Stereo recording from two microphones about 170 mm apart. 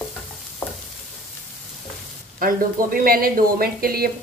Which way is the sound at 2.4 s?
55° right (ahead or behind).